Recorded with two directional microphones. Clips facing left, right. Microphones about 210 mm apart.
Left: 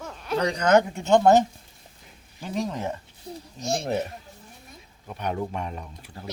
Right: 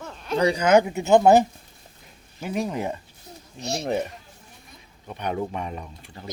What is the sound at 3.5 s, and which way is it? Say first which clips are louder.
Speech: left 2 dB; 45° left (ahead or behind).